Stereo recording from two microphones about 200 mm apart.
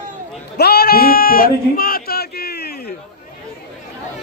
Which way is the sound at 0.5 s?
50° left (ahead or behind).